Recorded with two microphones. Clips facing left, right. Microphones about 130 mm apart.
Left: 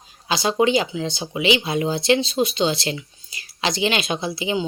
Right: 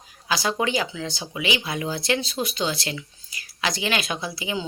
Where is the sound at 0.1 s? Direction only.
25° left (ahead or behind).